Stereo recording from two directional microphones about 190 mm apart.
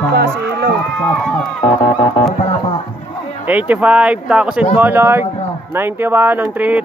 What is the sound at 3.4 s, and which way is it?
Speech, 10° right (ahead or behind).